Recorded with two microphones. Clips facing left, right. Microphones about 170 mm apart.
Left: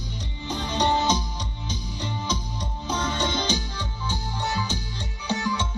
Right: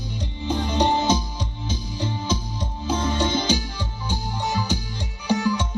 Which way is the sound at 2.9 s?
10° right (ahead or behind).